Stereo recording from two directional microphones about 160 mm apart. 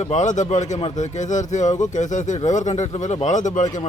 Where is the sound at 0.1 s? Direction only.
50° left (ahead or behind).